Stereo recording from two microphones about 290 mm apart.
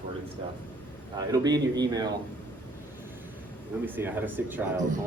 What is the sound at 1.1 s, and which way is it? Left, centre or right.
A man's voice, centre.